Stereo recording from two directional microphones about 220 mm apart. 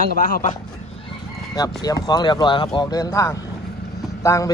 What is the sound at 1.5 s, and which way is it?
Speech, 15° left (ahead or behind).